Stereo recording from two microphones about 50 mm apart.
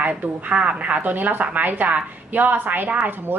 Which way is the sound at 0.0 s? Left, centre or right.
Right.